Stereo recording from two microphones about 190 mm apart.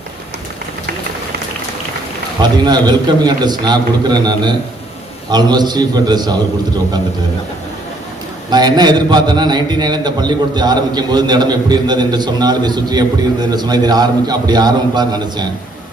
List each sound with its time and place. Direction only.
2.4 s a man's voice: 20° right (ahead or behind)
8.4 s a man's voice: 20° right (ahead or behind)